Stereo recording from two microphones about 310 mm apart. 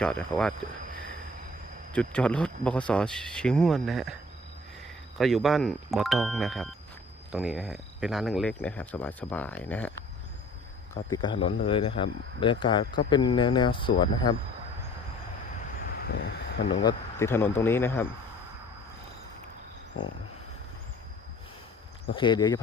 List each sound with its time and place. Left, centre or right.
0.0 s speech: centre
1.9 s speech: centre
5.1 s speech: centre
11.1 s speech: centre
16.0 s speech: left
16.8 s speech: centre
22.1 s speech: centre